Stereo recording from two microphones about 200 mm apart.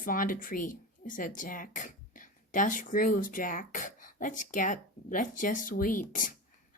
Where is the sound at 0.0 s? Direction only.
45° left (ahead or behind).